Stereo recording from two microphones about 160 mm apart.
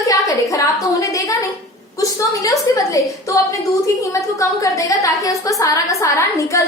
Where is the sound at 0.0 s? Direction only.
20° left (ahead or behind).